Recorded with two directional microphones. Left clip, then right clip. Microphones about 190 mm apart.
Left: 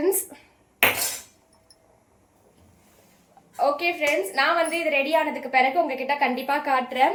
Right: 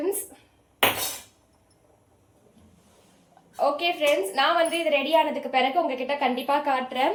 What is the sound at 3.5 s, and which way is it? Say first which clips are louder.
A woman's voice: left 1 dB; centre (ahead or behind).